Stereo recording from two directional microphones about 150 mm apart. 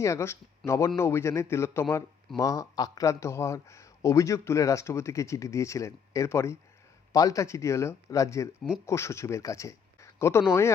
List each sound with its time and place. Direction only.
0.0 s speech: 20° left (ahead or behind)